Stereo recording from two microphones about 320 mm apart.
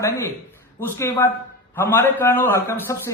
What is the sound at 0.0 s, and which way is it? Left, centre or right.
A man's voice, centre.